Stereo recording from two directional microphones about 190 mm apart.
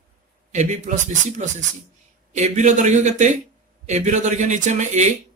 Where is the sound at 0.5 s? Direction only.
40° right (ahead or behind).